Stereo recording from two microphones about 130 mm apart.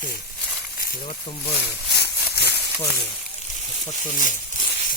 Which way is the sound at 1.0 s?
40° left (ahead or behind).